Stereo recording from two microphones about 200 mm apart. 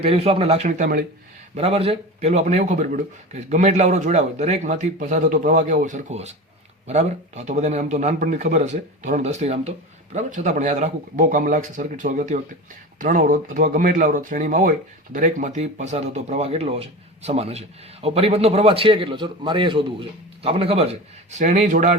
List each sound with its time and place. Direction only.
0.0 s speech: 30° right (ahead or behind)
1.5 s speech: 30° right (ahead or behind)